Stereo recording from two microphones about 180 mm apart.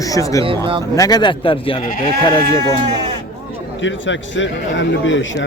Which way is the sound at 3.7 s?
90° left.